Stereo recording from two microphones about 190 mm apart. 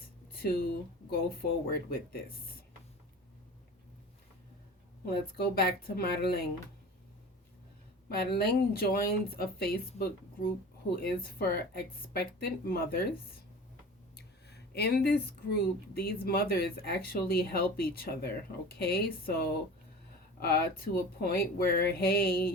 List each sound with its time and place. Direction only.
1.1 s speech: 55° left (ahead or behind)
5.0 s speech: 55° left (ahead or behind)
8.1 s speech: 55° left (ahead or behind)
14.2 s speech: 60° left (ahead or behind)